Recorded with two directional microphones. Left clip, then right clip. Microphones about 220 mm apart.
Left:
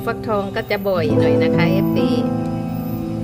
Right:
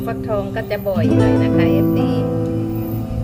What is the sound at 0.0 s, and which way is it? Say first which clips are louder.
Speech: left 1 dB; 50° left (ahead or behind).